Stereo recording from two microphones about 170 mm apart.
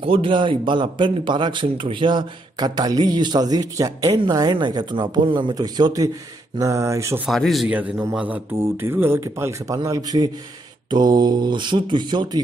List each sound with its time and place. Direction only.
0.0 s a man's voice: 30° right (ahead or behind)
7.2 s a man's voice: centre (ahead or behind); by 12.4 s 25° right (ahead or behind)